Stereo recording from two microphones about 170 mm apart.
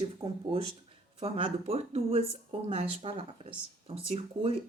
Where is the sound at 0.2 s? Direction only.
30° right (ahead or behind).